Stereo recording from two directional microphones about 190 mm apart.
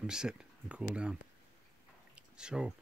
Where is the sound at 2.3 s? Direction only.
5° right (ahead or behind).